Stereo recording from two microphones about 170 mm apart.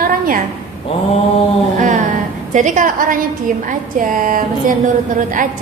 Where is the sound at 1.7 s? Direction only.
50° right (ahead or behind).